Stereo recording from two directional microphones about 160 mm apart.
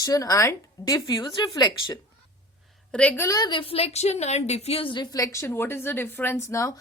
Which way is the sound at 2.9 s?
10° left (ahead or behind).